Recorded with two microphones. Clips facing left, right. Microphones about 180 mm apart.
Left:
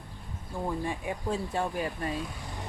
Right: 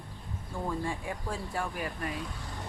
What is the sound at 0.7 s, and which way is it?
Speech, 20° left (ahead or behind).